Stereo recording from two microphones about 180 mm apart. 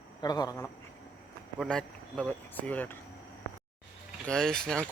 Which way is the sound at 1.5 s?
5° left (ahead or behind).